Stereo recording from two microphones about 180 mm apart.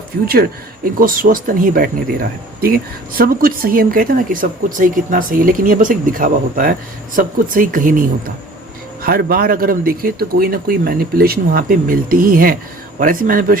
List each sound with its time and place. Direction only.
0.9 s speech: 50° right (ahead or behind)